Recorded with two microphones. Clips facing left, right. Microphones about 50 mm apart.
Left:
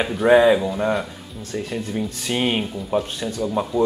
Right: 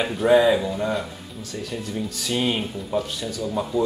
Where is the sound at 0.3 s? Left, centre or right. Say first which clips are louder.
Left 3 dB; left.